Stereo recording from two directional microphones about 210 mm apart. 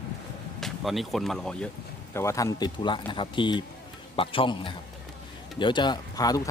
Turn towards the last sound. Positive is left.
turn(degrees=15)  # may be behind; listen again after turning